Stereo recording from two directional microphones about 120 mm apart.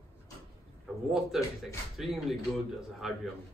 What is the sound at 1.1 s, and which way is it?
Speech, 5° right (ahead or behind).